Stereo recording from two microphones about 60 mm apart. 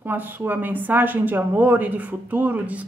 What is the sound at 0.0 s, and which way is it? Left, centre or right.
A woman's voice, right.